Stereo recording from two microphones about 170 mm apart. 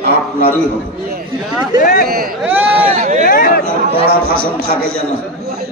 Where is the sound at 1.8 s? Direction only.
55° left (ahead or behind).